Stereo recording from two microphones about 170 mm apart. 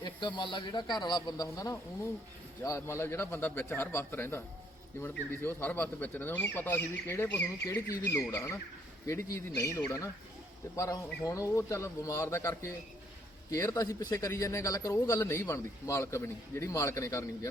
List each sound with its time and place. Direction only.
0.0 s a man's voice: 25° left (ahead or behind)